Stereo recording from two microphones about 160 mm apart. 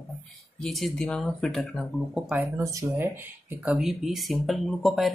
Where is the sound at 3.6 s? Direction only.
5° right (ahead or behind).